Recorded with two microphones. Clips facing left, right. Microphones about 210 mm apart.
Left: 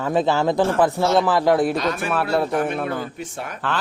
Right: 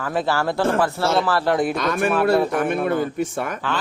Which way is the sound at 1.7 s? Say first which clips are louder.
Right 2 dB; 55° right (ahead or behind).